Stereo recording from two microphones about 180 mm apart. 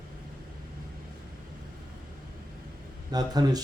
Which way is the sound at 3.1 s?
20° right (ahead or behind).